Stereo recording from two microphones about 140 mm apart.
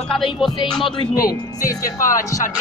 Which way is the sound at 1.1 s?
90° left.